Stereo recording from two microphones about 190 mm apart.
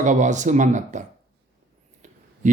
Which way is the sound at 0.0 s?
40° right (ahead or behind).